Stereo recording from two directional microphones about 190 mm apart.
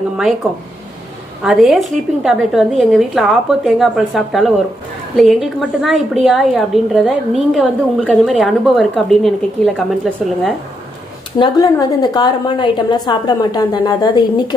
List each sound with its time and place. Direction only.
0.2 s a woman's voice: centre (ahead or behind)
11.3 s a woman's voice: 25° left (ahead or behind)